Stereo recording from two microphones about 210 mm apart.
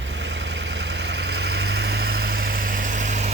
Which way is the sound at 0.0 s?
60° right (ahead or behind).